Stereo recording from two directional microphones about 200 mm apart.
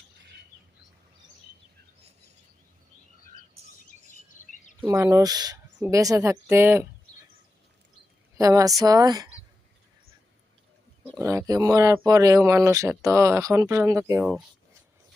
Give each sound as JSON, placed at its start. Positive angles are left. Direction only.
{"t": 4.4, "sound": "bird vocalization", "side_deg": 40}
{"t": 4.8, "sound": "speech", "side_deg": -15}
{"t": 8.4, "sound": "speech", "side_deg": -15}
{"t": 11.2, "sound": "speech", "side_deg": -15}